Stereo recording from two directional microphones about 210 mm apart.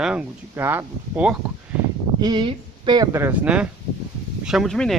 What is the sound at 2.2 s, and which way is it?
Speech, 20° right (ahead or behind).